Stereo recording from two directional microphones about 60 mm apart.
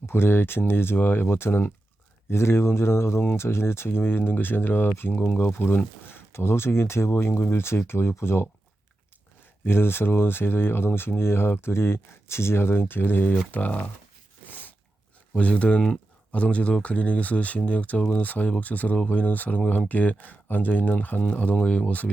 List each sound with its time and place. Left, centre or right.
0.0 s speech: left
9.6 s speech: left
15.3 s speech: left